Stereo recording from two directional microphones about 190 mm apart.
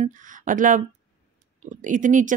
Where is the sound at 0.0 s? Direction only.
45° right (ahead or behind).